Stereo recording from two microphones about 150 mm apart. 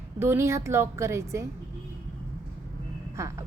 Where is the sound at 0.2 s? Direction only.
15° right (ahead or behind).